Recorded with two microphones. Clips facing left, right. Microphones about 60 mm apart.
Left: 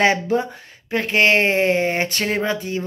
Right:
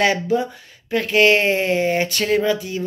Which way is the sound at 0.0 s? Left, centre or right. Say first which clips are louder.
Even; left.